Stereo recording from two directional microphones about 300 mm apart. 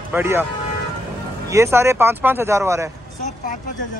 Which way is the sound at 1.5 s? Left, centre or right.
Centre.